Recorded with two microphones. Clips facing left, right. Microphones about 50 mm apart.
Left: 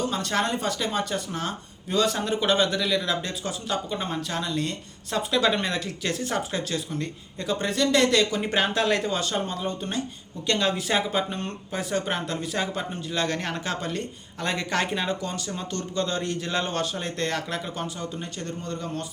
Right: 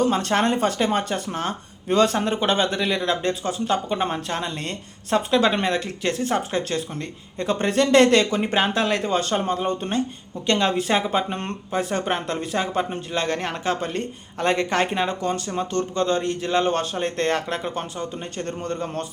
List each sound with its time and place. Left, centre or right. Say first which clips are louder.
0.0 s speech: right 6 dB; right
1.9 s speech: right 5 dB; right
2.1 s speech: right 2 dB; right
8.4 s speech: right 3 dB; right
9.1 s speech: right 5 dB; right
11.3 s speech: right 3 dB; right
11.7 s speech: right 4 dB; right
14.0 s speech: right 6 dB; right
18.4 s speech: right 5 dB; right